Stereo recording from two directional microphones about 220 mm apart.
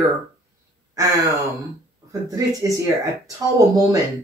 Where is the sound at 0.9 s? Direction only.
15° right (ahead or behind).